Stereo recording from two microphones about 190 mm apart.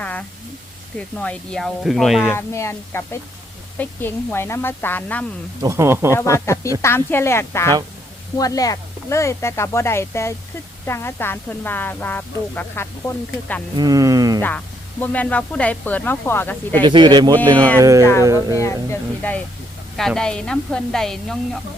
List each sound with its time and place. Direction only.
0.0 s a sound: 5° left (ahead or behind)
0.9 s a woman's voice: 5° left (ahead or behind)
2.3 s speech: 15° left (ahead or behind)
5.6 s speech: 15° right (ahead or behind)
6.1 s speech: 15° left (ahead or behind)
13.7 s speech: 20° right (ahead or behind)
14.4 s speech: 10° left (ahead or behind)
16.8 s speech: 25° right (ahead or behind)
18.0 s speech: 15° left (ahead or behind)
18.3 s speech: 15° right (ahead or behind)
18.6 s a woman's voice: 10° left (ahead or behind)